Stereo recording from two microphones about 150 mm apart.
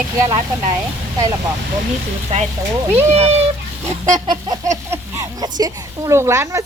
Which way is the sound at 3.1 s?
45° right (ahead or behind).